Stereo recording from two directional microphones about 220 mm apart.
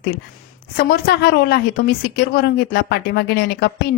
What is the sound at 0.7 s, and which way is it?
A woman's voice, 45° left (ahead or behind).